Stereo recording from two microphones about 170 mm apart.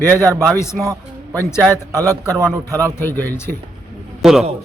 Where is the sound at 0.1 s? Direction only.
10° left (ahead or behind).